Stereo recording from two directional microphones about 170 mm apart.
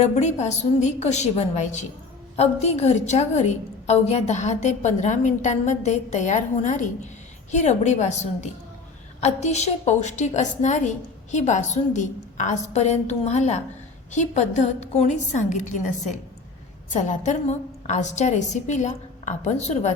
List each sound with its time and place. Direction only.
0.0 s a woman's voice: 40° left (ahead or behind)